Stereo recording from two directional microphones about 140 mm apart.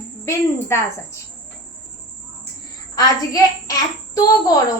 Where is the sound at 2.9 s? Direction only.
25° left (ahead or behind).